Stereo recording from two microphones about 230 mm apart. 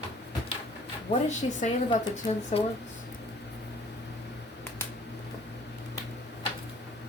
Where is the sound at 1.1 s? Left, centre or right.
Left.